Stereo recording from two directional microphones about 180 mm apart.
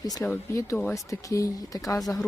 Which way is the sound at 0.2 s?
15° left (ahead or behind).